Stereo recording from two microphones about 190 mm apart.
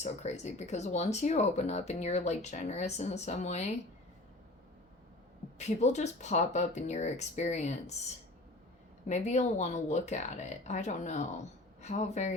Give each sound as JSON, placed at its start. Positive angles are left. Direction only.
{"t": 0.0, "sound": "speech", "side_deg": 35}
{"t": 5.5, "sound": "speech", "side_deg": 35}
{"t": 9.0, "sound": "speech", "side_deg": 35}